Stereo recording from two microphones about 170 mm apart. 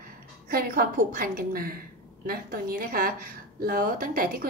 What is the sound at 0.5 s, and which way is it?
A woman's voice, 60° right (ahead or behind).